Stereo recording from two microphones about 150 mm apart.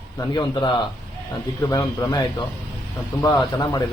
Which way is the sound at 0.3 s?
30° left (ahead or behind).